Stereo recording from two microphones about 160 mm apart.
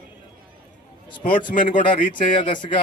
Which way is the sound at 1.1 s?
30° left (ahead or behind).